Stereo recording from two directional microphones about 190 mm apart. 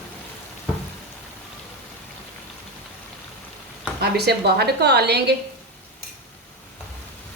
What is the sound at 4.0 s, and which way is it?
A woman's voice, 60° right (ahead or behind).